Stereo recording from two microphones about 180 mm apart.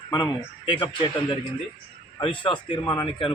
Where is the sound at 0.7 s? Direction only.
25° left (ahead or behind).